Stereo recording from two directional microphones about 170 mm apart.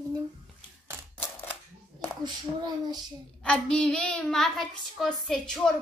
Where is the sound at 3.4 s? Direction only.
5° left (ahead or behind).